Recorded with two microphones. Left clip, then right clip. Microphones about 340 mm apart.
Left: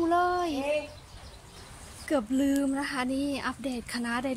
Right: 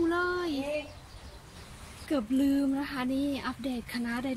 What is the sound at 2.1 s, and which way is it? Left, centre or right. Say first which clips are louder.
A child's voice: left 1 dB; centre.